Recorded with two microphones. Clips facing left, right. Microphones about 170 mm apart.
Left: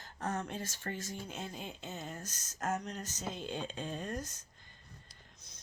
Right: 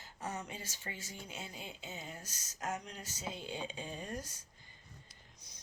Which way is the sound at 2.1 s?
10° right (ahead or behind).